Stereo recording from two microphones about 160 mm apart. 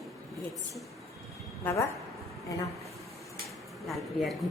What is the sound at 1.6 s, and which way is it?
Speech, 15° left (ahead or behind).